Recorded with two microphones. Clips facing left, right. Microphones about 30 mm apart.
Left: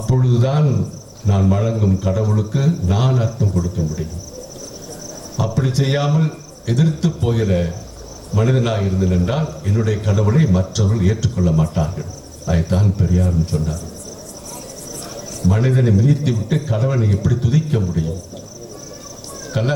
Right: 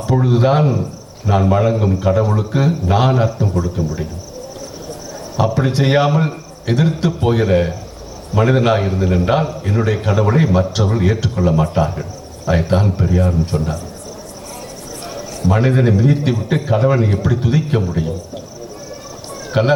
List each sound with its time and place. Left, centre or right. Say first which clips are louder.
0.0 s speech: right 4 dB; right
5.4 s speech: right 4 dB; right
15.0 s speech: right 2 dB; right
19.5 s speech: right 6 dB; right